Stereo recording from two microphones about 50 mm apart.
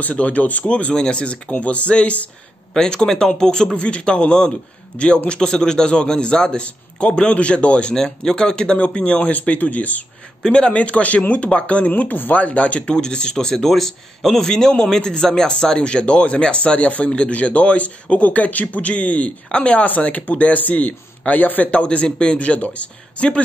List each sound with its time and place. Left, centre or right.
0.0 s speech: left
10.4 s speech: centre